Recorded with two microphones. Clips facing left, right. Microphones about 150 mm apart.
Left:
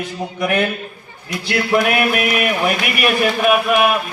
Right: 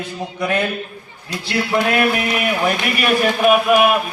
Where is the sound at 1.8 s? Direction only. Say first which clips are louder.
Even; 15° left (ahead or behind).